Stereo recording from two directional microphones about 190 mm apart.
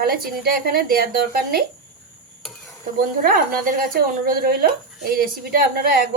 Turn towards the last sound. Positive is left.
turn(degrees=-50)  # may be behind; listen again after turning